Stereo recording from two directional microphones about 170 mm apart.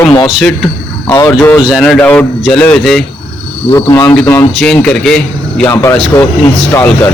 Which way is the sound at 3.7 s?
20° left (ahead or behind).